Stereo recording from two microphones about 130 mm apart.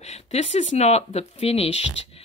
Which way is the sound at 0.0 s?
60° left (ahead or behind).